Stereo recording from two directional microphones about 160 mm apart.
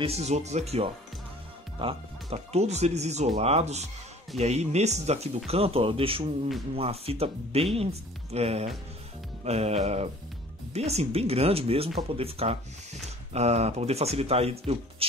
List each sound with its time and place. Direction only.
0.0 s speech: 40° right (ahead or behind)